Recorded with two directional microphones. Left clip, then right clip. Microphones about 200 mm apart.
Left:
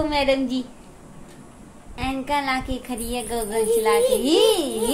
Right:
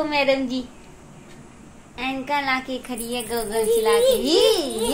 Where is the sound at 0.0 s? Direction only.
15° left (ahead or behind).